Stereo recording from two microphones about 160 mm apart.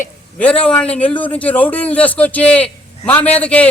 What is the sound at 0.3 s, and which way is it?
A man's voice, 5° left (ahead or behind).